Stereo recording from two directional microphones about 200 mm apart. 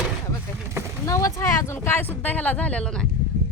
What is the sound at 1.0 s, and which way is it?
Speech, 15° left (ahead or behind).